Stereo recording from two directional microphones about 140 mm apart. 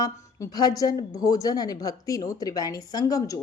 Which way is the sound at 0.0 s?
25° left (ahead or behind).